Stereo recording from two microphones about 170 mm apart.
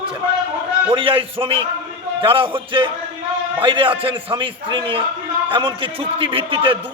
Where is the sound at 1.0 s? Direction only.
30° right (ahead or behind).